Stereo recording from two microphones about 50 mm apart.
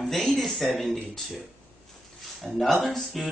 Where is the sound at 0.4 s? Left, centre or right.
Centre.